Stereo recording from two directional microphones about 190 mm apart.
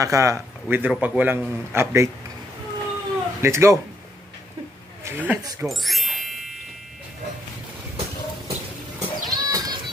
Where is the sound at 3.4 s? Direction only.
15° right (ahead or behind).